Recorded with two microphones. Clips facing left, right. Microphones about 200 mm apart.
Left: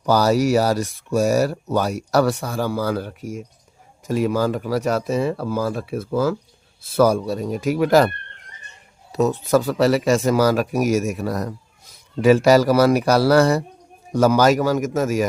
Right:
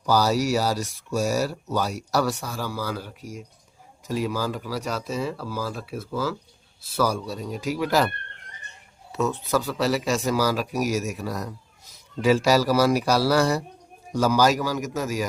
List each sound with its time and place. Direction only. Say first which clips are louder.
0.0 s speech: left 5 dB; 55° left (ahead or behind)
9.1 s speech: left 6 dB; 40° left (ahead or behind)